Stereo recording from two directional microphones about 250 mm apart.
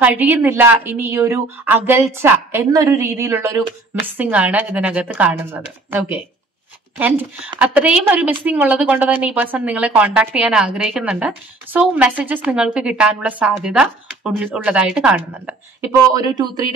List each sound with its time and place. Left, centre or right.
0.0 s a woman's voice: centre
16.1 s speech: centre